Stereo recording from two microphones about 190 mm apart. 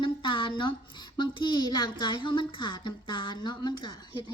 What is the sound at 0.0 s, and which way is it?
A child's voice, 25° left (ahead or behind).